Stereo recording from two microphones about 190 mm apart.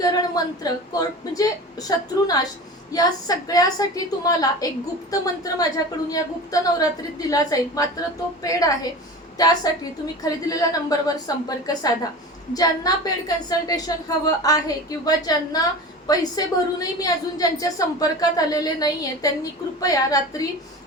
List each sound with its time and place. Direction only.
0.0 s a woman's voice: 20° left (ahead or behind)